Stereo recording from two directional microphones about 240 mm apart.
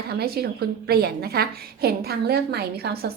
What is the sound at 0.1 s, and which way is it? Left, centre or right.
A woman's voice, right.